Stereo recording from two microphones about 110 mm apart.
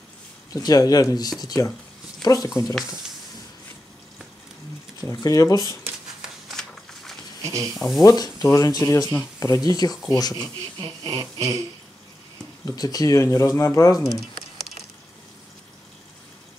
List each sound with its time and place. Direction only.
0.5 s speech: 35° left (ahead or behind)
2.6 s speech: centre (ahead or behind)
5.0 s speech: 35° left (ahead or behind)
6.2 s a sound: 5° left (ahead or behind)
7.4 s speech: 30° right (ahead or behind)
7.7 s speech: centre (ahead or behind)
8.0 s speech: 35° left (ahead or behind)
10.8 s a sound: 35° right (ahead or behind)
12.6 s speech: 35° left (ahead or behind)